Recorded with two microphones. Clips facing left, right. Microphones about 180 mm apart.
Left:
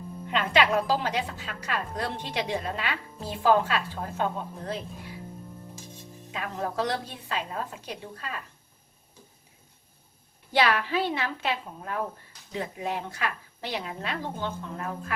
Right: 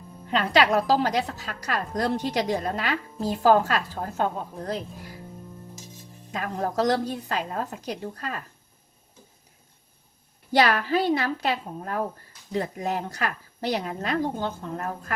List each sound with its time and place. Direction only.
0.3 s a woman's voice: 35° right (ahead or behind)
6.3 s a woman's voice: 40° right (ahead or behind)
10.5 s a woman's voice: 40° right (ahead or behind)